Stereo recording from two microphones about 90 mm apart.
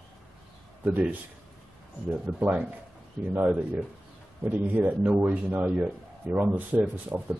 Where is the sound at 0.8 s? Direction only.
20° right (ahead or behind).